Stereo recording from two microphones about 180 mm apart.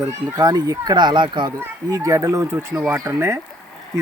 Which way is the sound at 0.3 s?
20° right (ahead or behind).